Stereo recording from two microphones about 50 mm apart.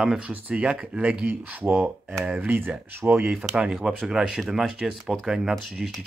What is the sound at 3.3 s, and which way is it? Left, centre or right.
Speech, centre.